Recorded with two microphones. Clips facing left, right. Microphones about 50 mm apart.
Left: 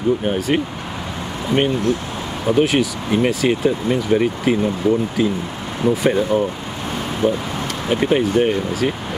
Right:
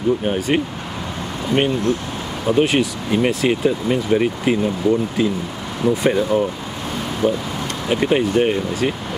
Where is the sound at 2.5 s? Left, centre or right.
Centre.